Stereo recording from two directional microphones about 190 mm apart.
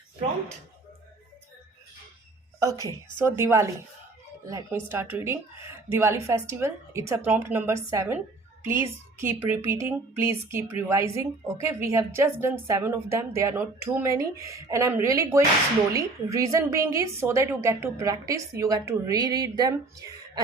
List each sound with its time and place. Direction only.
2.8 s a woman's voice: 15° right (ahead or behind)